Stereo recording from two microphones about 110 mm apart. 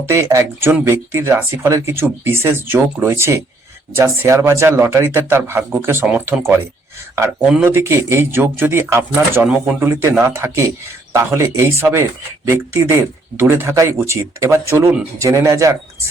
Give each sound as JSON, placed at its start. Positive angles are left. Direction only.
{"t": 0.0, "sound": "speech", "side_deg": -25}
{"t": 7.6, "sound": "speech", "side_deg": -20}